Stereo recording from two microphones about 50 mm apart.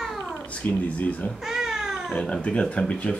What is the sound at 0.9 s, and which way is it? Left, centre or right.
Speech, left.